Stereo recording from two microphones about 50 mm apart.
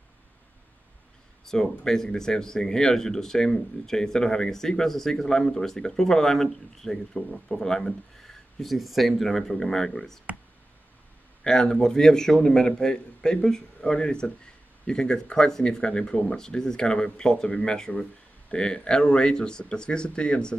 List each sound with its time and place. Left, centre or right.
1.4 s a man's voice: centre
11.4 s a man's voice: centre